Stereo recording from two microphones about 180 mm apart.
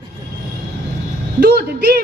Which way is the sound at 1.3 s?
65° right (ahead or behind).